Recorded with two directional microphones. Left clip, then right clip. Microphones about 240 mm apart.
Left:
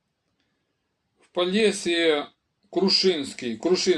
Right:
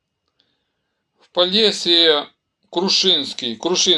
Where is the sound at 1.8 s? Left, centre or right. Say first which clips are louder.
Right 8 dB; centre.